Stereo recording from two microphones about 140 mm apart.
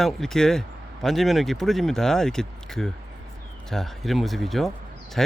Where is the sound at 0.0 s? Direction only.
5° left (ahead or behind).